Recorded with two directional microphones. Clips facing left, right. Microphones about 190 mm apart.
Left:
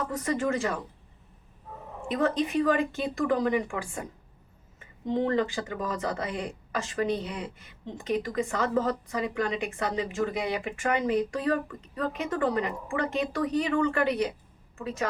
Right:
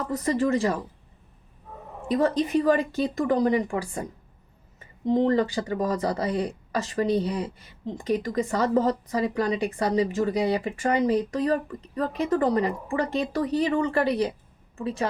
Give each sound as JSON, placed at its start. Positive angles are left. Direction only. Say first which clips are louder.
{"t": 0.3, "sound": "speech", "louder": "right 5 dB", "side_deg": -35}
{"t": 2.0, "sound": "speech", "louder": "right 4 dB", "side_deg": -35}
{"t": 5.0, "sound": "speech", "louder": "right 5 dB", "side_deg": -35}